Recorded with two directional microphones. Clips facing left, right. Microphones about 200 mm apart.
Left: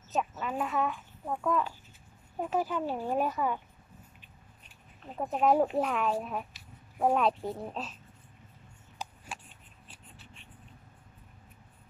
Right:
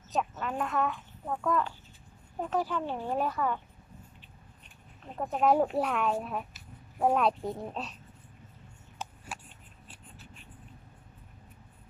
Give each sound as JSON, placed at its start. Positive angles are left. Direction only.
{"t": 0.1, "sound": "a child's voice", "side_deg": 5}
{"t": 4.6, "sound": "speech", "side_deg": 0}
{"t": 8.9, "sound": "a sound", "side_deg": 0}